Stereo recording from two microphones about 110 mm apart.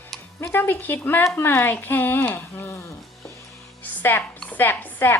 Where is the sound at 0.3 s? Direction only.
25° left (ahead or behind).